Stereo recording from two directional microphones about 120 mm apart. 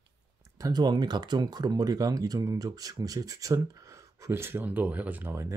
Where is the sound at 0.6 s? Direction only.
35° right (ahead or behind).